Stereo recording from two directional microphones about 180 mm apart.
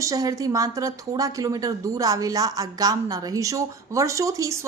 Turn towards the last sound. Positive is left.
turn(degrees=-15)  # may be behind; listen again after turning